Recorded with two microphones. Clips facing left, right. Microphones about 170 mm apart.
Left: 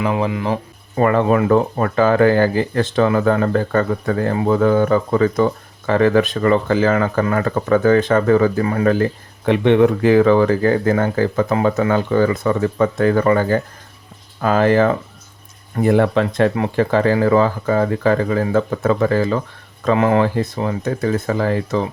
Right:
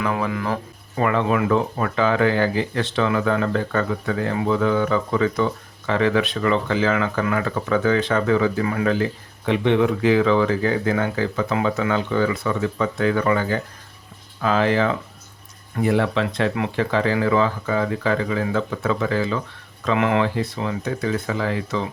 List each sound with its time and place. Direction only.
0.0 s speech: 25° left (ahead or behind)
0.9 s speech: 40° left (ahead or behind)
9.5 s speech: 55° left (ahead or behind)